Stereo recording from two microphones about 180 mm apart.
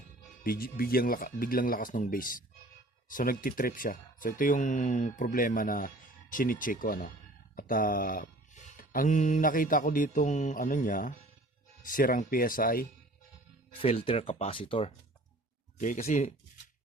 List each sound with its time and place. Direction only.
0.4 s speech: 55° left (ahead or behind)
13.7 s speech: 30° left (ahead or behind)
15.8 s speech: 40° left (ahead or behind)